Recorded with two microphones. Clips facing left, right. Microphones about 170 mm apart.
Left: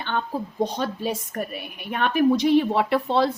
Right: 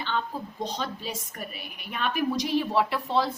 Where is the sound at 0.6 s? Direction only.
55° left (ahead or behind).